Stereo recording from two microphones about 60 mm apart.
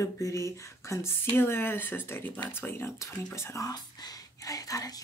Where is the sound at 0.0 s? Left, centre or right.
Left.